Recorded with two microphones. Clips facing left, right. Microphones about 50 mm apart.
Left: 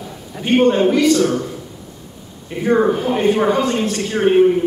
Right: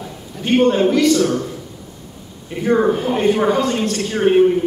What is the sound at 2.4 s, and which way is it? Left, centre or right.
A man's voice, centre.